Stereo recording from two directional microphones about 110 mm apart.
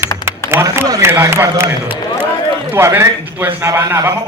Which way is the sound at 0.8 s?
35° right (ahead or behind).